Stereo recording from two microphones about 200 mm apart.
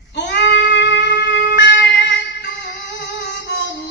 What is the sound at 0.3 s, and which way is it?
Music, 55° left (ahead or behind).